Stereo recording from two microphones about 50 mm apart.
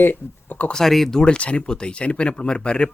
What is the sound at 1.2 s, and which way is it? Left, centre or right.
Speech, left.